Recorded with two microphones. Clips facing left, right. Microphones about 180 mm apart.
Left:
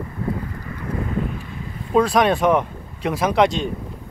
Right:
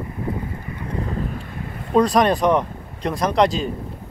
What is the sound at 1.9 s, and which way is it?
Speech, centre (ahead or behind).